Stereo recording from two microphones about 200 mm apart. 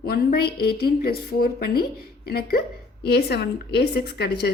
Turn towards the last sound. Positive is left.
turn(degrees=50)  # may be behind; listen again after turning